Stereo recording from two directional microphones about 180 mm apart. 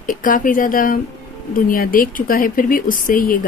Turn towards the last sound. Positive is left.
turn(degrees=50)  # may be behind; listen again after turning